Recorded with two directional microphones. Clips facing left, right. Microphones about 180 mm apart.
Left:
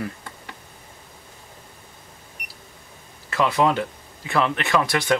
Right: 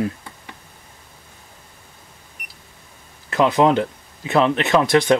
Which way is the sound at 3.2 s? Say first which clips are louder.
Right 4 dB; 20° right (ahead or behind).